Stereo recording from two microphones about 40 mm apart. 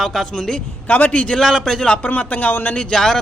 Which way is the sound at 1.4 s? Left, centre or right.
Centre.